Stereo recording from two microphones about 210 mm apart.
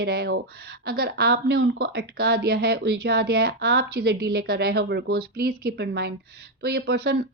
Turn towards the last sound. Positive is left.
turn(degrees=-50)  # may be behind; listen again after turning